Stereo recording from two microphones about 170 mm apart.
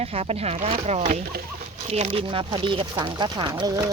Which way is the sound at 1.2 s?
60° right (ahead or behind).